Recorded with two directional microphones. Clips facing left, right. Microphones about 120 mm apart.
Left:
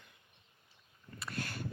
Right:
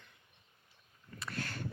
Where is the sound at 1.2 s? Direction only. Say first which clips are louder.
Even; 15° left (ahead or behind).